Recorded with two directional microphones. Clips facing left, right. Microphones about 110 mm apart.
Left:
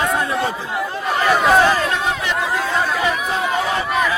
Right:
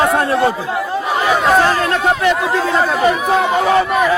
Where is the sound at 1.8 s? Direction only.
55° right (ahead or behind).